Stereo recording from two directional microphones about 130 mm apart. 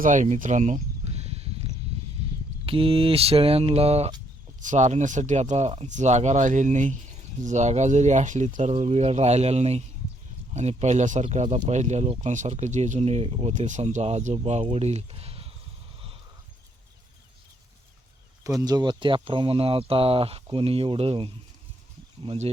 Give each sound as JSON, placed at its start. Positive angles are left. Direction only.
{"t": 0.0, "sound": "speech", "side_deg": -70}
{"t": 2.6, "sound": "speech", "side_deg": -45}
{"t": 4.6, "sound": "speech", "side_deg": -70}
{"t": 13.5, "sound": "speech", "side_deg": -70}
{"t": 18.4, "sound": "speech", "side_deg": -25}